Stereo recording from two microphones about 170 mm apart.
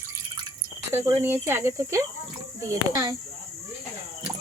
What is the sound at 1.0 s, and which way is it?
Speech, 15° right (ahead or behind).